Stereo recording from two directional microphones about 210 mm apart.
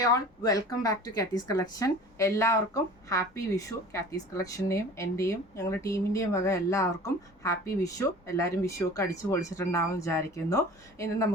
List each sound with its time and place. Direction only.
0.0 s speech: 15° left (ahead or behind)